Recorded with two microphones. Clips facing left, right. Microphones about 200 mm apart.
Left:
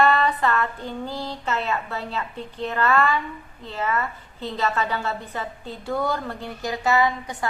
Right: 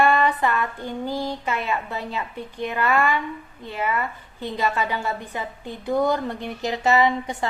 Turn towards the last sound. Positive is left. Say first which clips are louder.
# right 2 dB
turn(degrees=-20)  # may be behind; listen again after turning